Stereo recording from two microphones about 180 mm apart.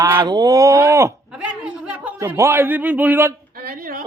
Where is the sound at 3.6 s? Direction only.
55° right (ahead or behind).